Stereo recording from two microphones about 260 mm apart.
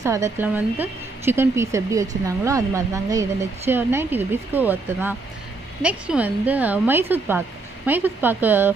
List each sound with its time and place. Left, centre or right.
0.0 s speech: centre